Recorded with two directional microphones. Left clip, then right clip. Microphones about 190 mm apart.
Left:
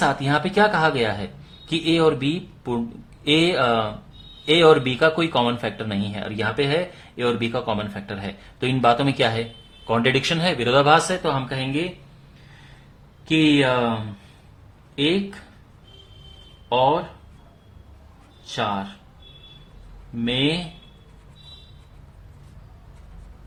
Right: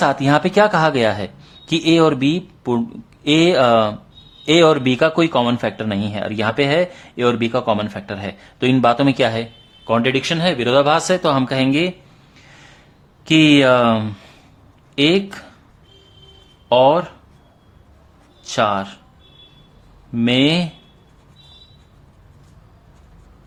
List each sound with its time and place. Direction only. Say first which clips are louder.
0.0 s speech: right 5 dB; 30° right (ahead or behind)
13.2 s speech: right 6 dB; 45° right (ahead or behind)
14.9 s speech: right 6 dB; 45° right (ahead or behind)
16.6 s speech: right 6 dB; 45° right (ahead or behind)
18.4 s speech: right 8 dB; 45° right (ahead or behind)
20.1 s speech: right 7 dB; 45° right (ahead or behind)